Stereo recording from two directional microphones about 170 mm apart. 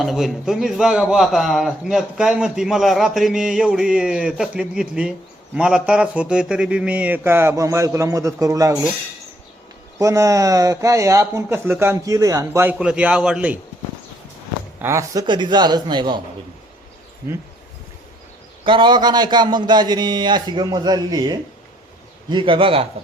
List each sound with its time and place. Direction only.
0.0 s a man's voice: centre (ahead or behind); by 8.7 s 20° right (ahead or behind)
10.0 s speech: 20° right (ahead or behind)
12.8 s a man's voice: 5° right (ahead or behind)
14.8 s speech: 15° right (ahead or behind)
18.6 s speech: 25° right (ahead or behind)